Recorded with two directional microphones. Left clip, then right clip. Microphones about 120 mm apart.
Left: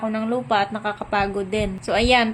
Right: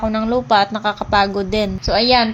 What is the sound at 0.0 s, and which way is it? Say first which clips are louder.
A woman's voice: right 6 dB; 40° right (ahead or behind).